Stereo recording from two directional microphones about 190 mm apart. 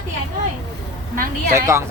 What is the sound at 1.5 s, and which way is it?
Speech, 15° right (ahead or behind).